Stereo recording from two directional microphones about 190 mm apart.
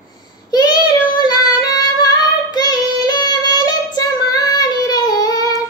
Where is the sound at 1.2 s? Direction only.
20° left (ahead or behind).